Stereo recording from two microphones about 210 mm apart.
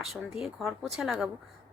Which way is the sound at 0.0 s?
Centre (ahead or behind).